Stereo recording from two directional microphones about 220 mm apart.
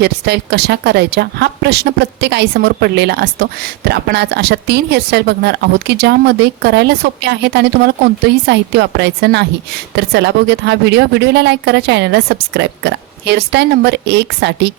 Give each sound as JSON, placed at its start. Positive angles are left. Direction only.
{"t": 0.0, "sound": "a woman's voice", "side_deg": -50}